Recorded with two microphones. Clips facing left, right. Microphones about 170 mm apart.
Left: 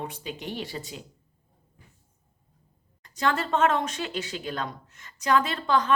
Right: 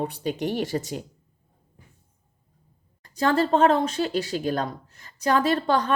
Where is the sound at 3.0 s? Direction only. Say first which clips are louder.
Right 5 dB; 35° right (ahead or behind).